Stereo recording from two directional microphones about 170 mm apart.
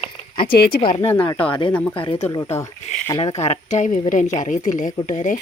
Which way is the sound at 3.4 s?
40° left (ahead or behind).